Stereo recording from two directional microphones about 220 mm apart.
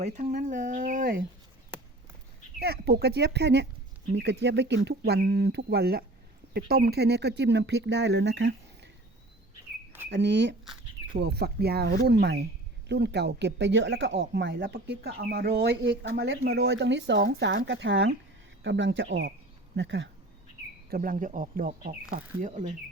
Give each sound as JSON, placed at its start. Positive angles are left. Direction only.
{"t": 0.0, "sound": "speech", "side_deg": -30}
{"t": 2.6, "sound": "speech", "side_deg": -45}
{"t": 10.1, "sound": "speech", "side_deg": -55}
{"t": 20.9, "sound": "speech", "side_deg": -40}